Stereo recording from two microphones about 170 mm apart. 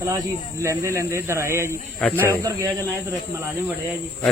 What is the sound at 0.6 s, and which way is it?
Speech, 15° right (ahead or behind).